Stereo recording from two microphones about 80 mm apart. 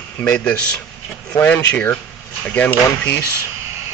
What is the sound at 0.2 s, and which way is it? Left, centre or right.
Speech, left.